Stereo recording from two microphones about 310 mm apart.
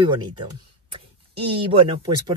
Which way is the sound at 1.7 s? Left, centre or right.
Centre.